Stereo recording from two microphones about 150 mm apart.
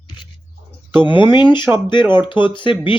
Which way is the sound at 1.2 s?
30° left (ahead or behind).